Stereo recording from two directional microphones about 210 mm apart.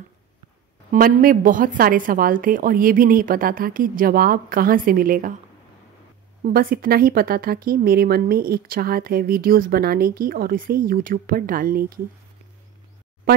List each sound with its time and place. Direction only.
0.9 s a woman's voice: 45° right (ahead or behind)
6.4 s speech: 45° right (ahead or behind)